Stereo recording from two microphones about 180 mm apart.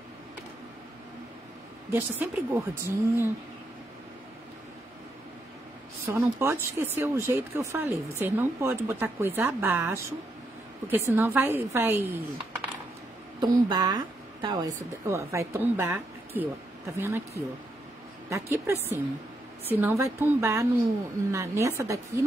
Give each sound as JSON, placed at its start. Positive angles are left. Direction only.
{"t": 1.9, "sound": "speech", "side_deg": -15}
{"t": 6.0, "sound": "speech", "side_deg": -15}
{"t": 13.4, "sound": "a woman's voice", "side_deg": -20}
{"t": 18.3, "sound": "speech", "side_deg": -15}